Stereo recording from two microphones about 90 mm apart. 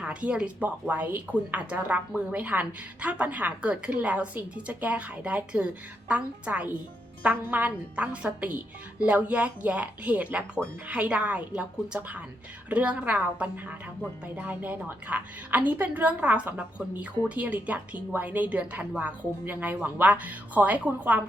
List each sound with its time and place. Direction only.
0.0 s a woman's voice: 15° right (ahead or behind)